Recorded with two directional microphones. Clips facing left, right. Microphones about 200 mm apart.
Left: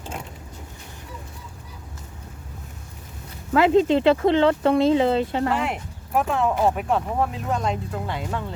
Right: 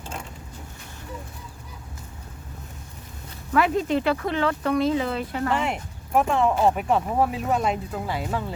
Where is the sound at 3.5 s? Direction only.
25° left (ahead or behind).